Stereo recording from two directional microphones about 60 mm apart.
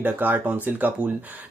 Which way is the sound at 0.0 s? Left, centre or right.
Right.